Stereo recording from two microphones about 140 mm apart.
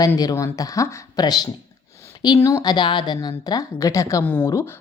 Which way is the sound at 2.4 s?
20° left (ahead or behind).